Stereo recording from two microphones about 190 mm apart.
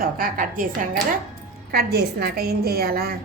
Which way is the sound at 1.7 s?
55° right (ahead or behind).